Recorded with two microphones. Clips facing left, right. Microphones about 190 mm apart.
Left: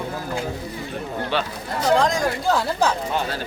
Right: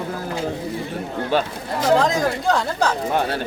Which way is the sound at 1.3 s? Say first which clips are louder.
Right 5 dB; 45° right (ahead or behind).